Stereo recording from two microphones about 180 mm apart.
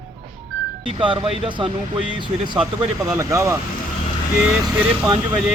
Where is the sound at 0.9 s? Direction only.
30° right (ahead or behind).